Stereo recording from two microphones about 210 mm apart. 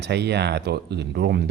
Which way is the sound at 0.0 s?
55° right (ahead or behind).